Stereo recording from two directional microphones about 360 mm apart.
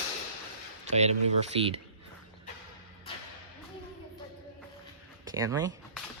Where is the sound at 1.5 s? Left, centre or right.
Centre.